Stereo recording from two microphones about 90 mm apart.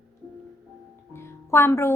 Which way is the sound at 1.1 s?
30° left (ahead or behind).